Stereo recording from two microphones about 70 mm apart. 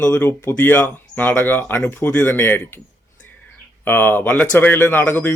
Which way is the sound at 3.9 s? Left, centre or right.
Left.